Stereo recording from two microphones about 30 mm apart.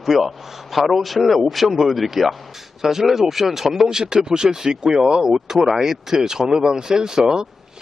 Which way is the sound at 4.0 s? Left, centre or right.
Right.